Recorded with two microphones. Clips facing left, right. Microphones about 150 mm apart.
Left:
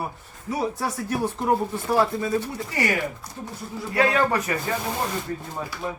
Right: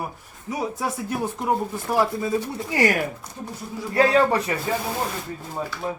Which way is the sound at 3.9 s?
35° right (ahead or behind).